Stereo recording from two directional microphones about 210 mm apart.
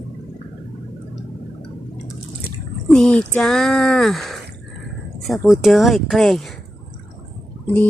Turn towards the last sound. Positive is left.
turn(degrees=10)  # may be behind; listen again after turning